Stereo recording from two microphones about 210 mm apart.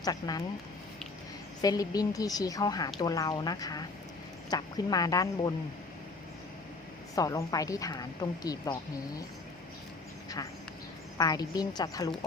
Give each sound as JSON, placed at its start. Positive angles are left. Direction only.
{"t": 0.0, "sound": "a woman's voice", "side_deg": 20}
{"t": 1.6, "sound": "a woman's voice", "side_deg": 15}
{"t": 7.2, "sound": "a woman's voice", "side_deg": 15}
{"t": 11.2, "sound": "a woman's voice", "side_deg": 20}